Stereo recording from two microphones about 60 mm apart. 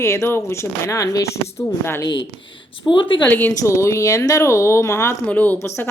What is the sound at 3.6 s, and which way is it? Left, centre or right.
Speech, left.